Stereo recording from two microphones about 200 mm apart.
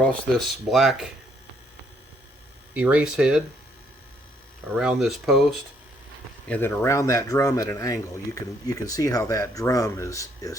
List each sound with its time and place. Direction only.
0.0 s speech: 5° left (ahead or behind)
2.7 s speech: 5° right (ahead or behind)
4.7 s speech: 5° right (ahead or behind)
6.5 s speech: 10° left (ahead or behind)